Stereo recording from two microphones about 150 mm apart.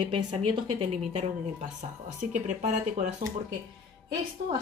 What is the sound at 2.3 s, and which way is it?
Speech, 55° right (ahead or behind).